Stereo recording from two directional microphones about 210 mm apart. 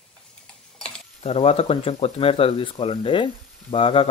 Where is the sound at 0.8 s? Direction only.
5° left (ahead or behind).